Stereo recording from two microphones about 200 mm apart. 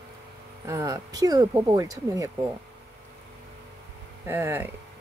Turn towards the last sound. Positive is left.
turn(degrees=-10)  # may be behind; listen again after turning